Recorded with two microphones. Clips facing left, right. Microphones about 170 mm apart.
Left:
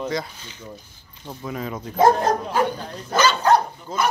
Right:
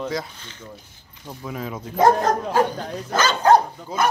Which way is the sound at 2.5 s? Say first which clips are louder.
Right 2 dB; 45° right (ahead or behind).